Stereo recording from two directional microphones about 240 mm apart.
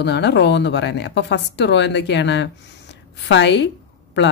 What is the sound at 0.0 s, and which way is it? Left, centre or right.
A woman's voice, left.